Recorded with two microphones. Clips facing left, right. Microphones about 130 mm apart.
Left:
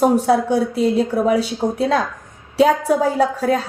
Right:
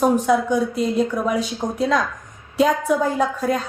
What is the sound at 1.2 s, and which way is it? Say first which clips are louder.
Speech: left 5 dB; 70° left (ahead or behind).